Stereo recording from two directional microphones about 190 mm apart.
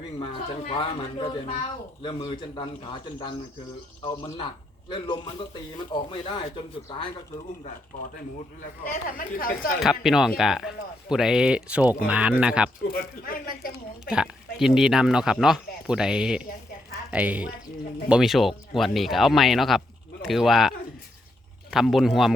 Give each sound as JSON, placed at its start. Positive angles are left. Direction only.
{"t": 0.7, "sound": "a man's voice", "side_deg": 30}
{"t": 8.8, "sound": "speech", "side_deg": 45}
{"t": 9.8, "sound": "speech", "side_deg": 0}
{"t": 12.9, "sound": "speech", "side_deg": 50}
{"t": 14.0, "sound": "a woman's voice", "side_deg": -5}